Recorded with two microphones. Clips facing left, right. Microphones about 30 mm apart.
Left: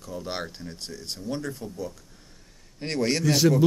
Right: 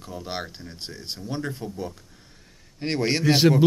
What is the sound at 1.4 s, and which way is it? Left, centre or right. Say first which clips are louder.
Speech: right 2 dB; right.